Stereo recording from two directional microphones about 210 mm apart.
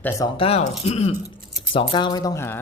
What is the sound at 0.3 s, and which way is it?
Speech, 30° left (ahead or behind).